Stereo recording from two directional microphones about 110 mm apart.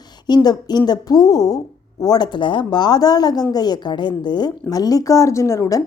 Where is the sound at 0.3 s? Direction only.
40° left (ahead or behind).